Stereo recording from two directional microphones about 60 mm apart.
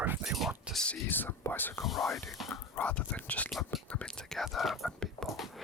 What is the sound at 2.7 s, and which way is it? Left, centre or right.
Speech, left.